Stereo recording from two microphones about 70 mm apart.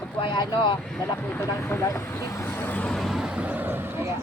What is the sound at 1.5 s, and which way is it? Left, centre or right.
Speech, left.